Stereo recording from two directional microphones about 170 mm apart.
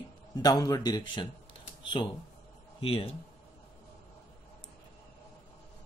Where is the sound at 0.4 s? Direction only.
20° left (ahead or behind).